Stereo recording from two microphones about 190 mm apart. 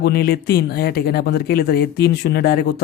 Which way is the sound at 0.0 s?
55° left (ahead or behind).